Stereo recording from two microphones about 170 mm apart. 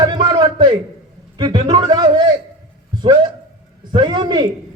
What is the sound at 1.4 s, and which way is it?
Speech, 25° right (ahead or behind).